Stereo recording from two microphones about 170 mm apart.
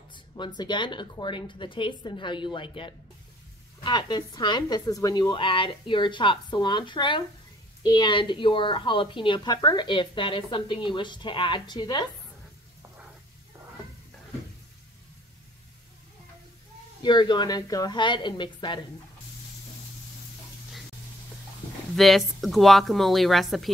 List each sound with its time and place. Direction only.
0.1 s a woman's voice: 25° left (ahead or behind)
17.0 s a woman's voice: 25° left (ahead or behind)
21.9 s speech: centre (ahead or behind)